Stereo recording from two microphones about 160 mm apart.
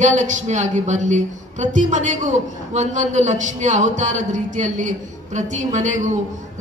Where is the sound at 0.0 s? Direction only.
50° right (ahead or behind).